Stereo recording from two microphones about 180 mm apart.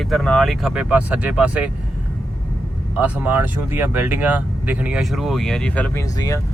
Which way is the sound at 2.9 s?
10° right (ahead or behind).